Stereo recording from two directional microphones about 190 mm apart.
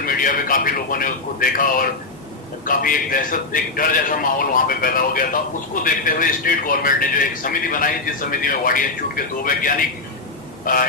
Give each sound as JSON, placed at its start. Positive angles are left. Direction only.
{"t": 0.0, "sound": "a man's voice", "side_deg": 45}